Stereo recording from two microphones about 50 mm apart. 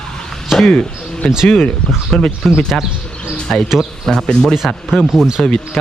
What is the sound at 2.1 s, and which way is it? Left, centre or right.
Speech, centre.